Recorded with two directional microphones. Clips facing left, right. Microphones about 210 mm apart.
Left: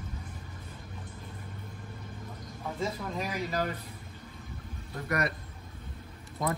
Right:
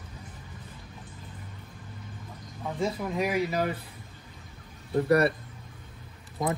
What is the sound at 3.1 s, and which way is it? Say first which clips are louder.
Speech: right 6 dB; 10° right (ahead or behind).